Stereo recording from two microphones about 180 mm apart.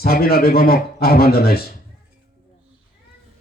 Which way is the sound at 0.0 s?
60° left (ahead or behind).